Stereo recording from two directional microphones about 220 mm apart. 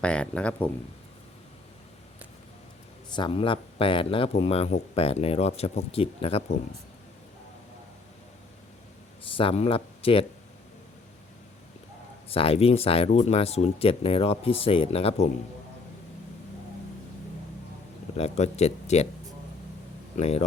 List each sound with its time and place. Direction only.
0.0 s speech: 5° left (ahead or behind)
3.2 s a man's voice: 25° left (ahead or behind)
9.3 s a man's voice: 25° left (ahead or behind)
12.3 s a man's voice: 25° left (ahead or behind)
18.2 s a man's voice: 30° left (ahead or behind)
20.1 s a man's voice: 30° left (ahead or behind)